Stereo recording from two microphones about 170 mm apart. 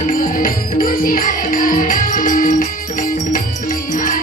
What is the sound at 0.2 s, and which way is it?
Music, 55° left (ahead or behind).